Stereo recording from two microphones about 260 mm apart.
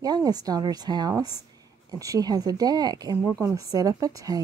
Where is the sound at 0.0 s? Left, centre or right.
Centre.